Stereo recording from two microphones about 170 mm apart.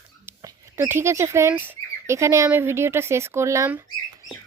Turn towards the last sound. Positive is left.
turn(degrees=-15)  # may be behind; listen again after turning